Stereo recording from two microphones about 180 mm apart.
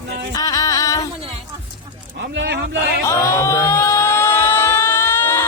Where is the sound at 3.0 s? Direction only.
15° left (ahead or behind).